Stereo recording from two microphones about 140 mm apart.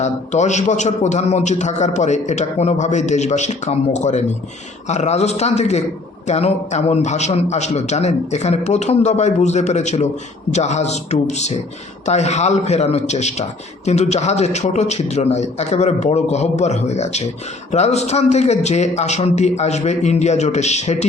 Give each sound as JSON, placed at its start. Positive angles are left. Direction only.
{"t": 0.0, "sound": "a man's voice", "side_deg": 55}